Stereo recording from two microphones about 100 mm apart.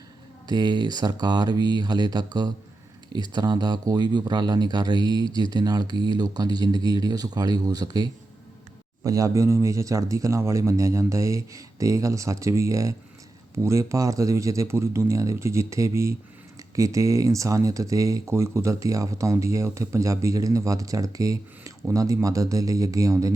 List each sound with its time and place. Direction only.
0.4 s speech: 45° right (ahead or behind)